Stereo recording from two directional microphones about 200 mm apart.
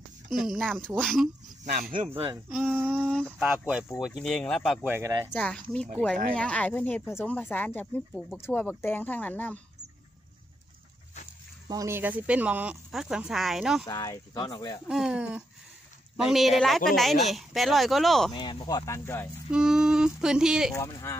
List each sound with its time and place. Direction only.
0.4 s speech: centre (ahead or behind)
1.7 s speech: 45° right (ahead or behind)
2.5 s speech: 5° right (ahead or behind)
3.1 s a sound: 5° left (ahead or behind)
3.3 s speech: 10° right (ahead or behind)
4.8 s speech: 15° right (ahead or behind)
5.3 s speech: 5° left (ahead or behind)
11.7 s speech: 15° right (ahead or behind)
13.8 s speech: 15° left (ahead or behind)
14.9 s speech: 5° right (ahead or behind)
18.3 s speech: 20° left (ahead or behind)
19.5 s speech: 5° right (ahead or behind)
20.7 s speech: 15° left (ahead or behind)